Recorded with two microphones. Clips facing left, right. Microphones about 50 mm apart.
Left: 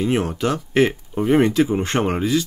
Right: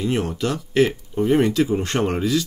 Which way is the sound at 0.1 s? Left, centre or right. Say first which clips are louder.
Left 2 dB; left.